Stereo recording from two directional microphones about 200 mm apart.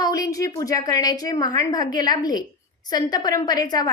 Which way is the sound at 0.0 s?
15° left (ahead or behind).